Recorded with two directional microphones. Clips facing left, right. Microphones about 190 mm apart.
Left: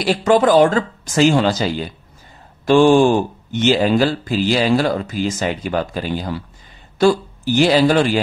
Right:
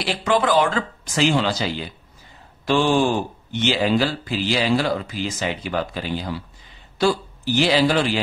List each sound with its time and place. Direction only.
0.0 s speech: 45° left (ahead or behind)